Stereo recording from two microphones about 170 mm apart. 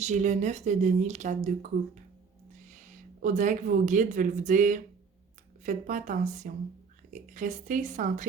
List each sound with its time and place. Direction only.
0.0 s speech: 45° right (ahead or behind)
2.6 s speech: 45° right (ahead or behind)